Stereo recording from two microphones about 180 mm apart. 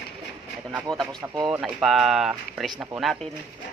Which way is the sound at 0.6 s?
20° right (ahead or behind).